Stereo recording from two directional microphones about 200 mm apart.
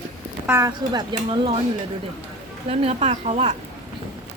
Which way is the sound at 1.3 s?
25° right (ahead or behind).